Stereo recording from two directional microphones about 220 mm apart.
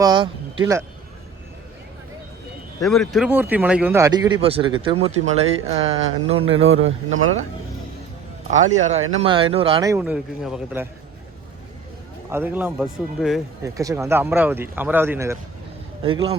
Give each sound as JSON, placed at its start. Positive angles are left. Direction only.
{"t": 0.0, "sound": "speech", "side_deg": -20}
{"t": 2.8, "sound": "speech", "side_deg": 0}
{"t": 6.6, "sound": "a man's voice", "side_deg": -65}
{"t": 8.4, "sound": "a man's voice", "side_deg": -35}
{"t": 9.8, "sound": "speech", "side_deg": -10}
{"t": 12.3, "sound": "speech", "side_deg": -10}
{"t": 13.7, "sound": "speech", "side_deg": -15}
{"t": 16.0, "sound": "speech", "side_deg": -25}